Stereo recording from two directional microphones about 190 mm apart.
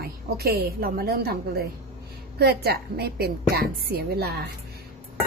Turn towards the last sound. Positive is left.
turn(degrees=-55)  # may be behind; listen again after turning